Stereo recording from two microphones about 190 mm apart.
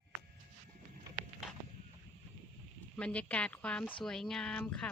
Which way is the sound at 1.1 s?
20° right (ahead or behind).